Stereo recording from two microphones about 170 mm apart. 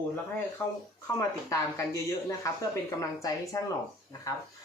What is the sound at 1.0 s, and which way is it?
Speech, 20° left (ahead or behind).